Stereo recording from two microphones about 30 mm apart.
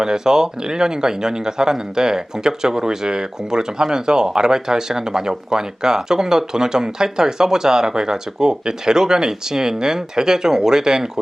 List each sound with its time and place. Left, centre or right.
0.0 s speech: right